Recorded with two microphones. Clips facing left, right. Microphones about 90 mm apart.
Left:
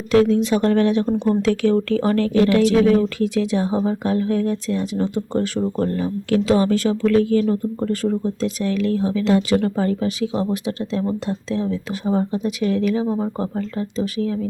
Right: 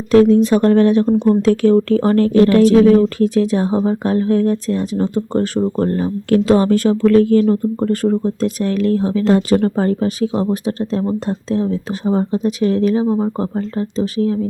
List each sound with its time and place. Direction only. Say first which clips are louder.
0.1 s speech: right 5 dB; 40° right (ahead or behind)
13.1 s speech: right 5 dB; 25° right (ahead or behind)
13.6 s speech: right 4 dB; 35° right (ahead or behind)